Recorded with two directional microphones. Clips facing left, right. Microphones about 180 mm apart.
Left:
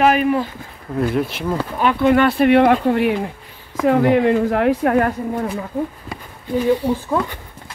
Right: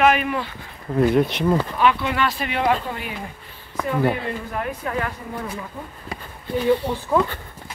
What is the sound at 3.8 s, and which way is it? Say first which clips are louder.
Speech: left 8 dB; 75° left (ahead or behind).